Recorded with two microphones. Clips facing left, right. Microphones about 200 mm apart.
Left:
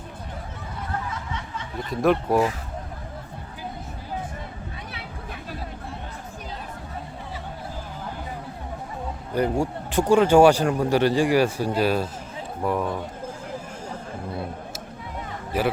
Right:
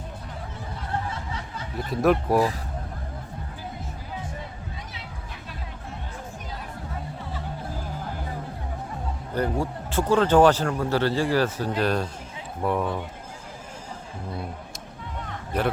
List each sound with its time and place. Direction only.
1.1 s a sound: 35° right (ahead or behind)
1.9 s speech: centre (ahead or behind)
9.3 s speech: 15° left (ahead or behind)
15.5 s speech: 5° left (ahead or behind)